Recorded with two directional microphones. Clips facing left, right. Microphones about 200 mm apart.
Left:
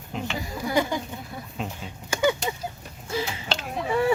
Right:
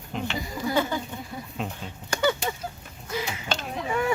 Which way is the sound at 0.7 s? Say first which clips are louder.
Left 1 dB; 15° left (ahead or behind).